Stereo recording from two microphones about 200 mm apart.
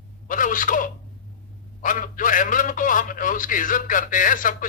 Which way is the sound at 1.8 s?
40° left (ahead or behind).